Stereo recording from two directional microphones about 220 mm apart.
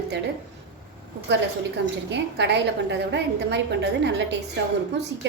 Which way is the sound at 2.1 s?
50° right (ahead or behind).